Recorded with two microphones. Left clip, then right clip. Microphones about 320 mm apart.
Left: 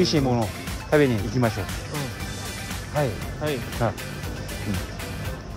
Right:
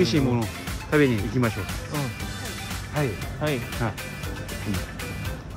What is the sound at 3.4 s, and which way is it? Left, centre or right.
Speech, right.